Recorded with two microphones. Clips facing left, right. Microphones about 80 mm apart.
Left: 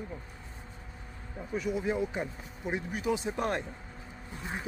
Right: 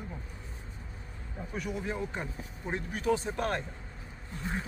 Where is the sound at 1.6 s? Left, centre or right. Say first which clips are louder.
Left 5 dB; centre.